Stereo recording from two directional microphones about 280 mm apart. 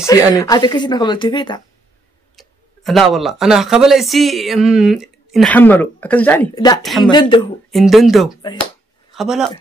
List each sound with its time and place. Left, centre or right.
0.0 s speech: centre
2.3 s speech: centre
6.8 s speech: centre
7.1 s speech: centre
7.7 s speech: centre
8.4 s speech: centre
9.1 s speech: centre